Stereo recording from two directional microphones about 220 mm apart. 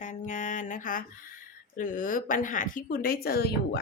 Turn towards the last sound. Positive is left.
turn(degrees=45)  # may be behind; listen again after turning